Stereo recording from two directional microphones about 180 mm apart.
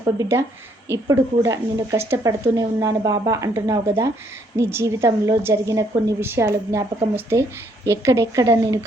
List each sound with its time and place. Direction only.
0.0 s speech: 15° right (ahead or behind)